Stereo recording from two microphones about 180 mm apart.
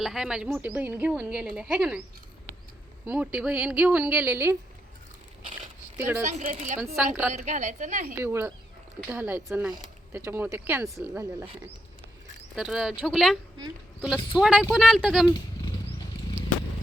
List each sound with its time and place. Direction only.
0.0 s a woman's voice: centre (ahead or behind)
3.1 s a woman's voice: 10° right (ahead or behind)
6.0 s a woman's voice: 15° right (ahead or behind)
6.2 s speech: 40° right (ahead or behind)
6.9 s a woman's voice: 10° right (ahead or behind)
7.3 s a woman's voice: 40° right (ahead or behind)
8.2 s a woman's voice: 15° right (ahead or behind)
12.5 s speech: 5° right (ahead or behind)